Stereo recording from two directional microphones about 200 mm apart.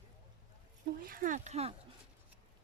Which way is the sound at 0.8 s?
45° right (ahead or behind).